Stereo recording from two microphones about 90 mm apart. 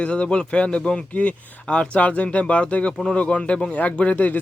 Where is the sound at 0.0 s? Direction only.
15° left (ahead or behind).